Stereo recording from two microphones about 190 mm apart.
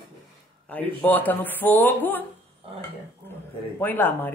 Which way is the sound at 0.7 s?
10° left (ahead or behind).